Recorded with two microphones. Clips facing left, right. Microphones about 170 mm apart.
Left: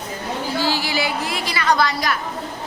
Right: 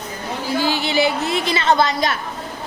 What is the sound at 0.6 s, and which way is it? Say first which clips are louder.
A woman's voice: right 5 dB; 20° right (ahead or behind).